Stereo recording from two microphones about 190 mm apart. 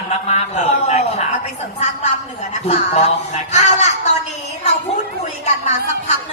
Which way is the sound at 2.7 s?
35° left (ahead or behind).